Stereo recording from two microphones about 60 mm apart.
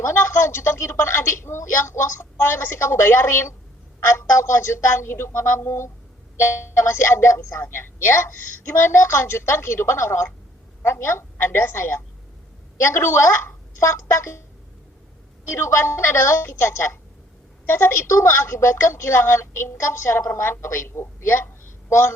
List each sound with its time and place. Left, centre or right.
0.0 s a woman's voice: left
15.5 s a woman's voice: left